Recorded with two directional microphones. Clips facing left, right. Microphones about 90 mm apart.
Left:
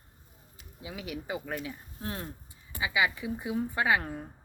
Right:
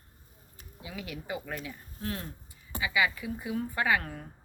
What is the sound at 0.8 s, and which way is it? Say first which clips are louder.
Speech: left 2 dB; 20° left (ahead or behind).